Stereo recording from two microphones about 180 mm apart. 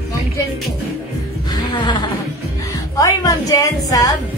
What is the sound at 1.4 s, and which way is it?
Music, 25° left (ahead or behind).